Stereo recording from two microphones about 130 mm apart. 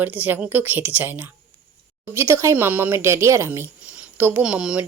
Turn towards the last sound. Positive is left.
turn(degrees=-5)  # may be behind; listen again after turning